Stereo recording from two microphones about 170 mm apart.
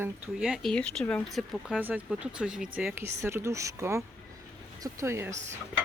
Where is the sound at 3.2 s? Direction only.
15° right (ahead or behind).